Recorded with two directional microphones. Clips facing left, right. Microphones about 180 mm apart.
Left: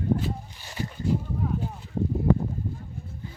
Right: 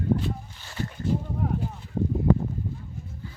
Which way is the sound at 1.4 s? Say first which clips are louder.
Right 1 dB; 70° right (ahead or behind).